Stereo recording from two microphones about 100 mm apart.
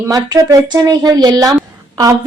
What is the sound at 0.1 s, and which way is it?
Speech, 40° right (ahead or behind).